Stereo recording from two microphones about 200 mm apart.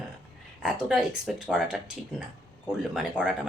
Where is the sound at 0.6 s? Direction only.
5° right (ahead or behind).